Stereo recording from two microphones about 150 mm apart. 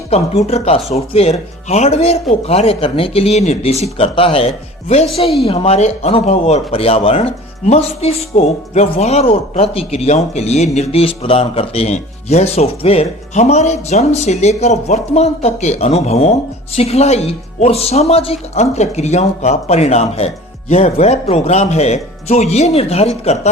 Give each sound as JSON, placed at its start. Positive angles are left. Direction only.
{"t": 0.1, "sound": "speech", "side_deg": 45}